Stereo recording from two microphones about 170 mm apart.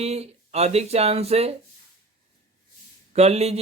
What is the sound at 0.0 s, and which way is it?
Speech, 40° right (ahead or behind).